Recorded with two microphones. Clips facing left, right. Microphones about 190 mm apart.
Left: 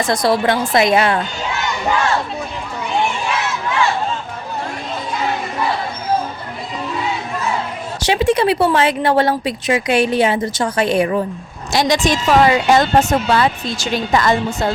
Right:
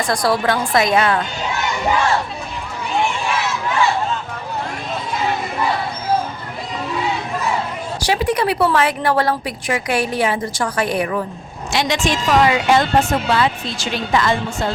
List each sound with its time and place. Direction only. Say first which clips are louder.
0.0 s speech: left 2 dB; 25° left (ahead or behind)
8.0 s speech: left 4 dB; 25° left (ahead or behind)
11.7 s speech: left 3 dB; 40° left (ahead or behind)